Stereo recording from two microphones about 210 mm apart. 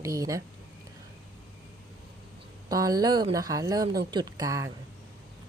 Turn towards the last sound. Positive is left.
turn(degrees=-15)  # may be behind; listen again after turning